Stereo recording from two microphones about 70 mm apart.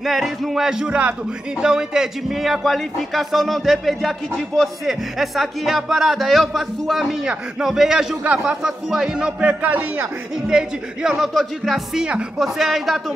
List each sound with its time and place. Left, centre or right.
0.0 s a man's voice: centre; by 9.8 s right
10.5 s a man's voice: centre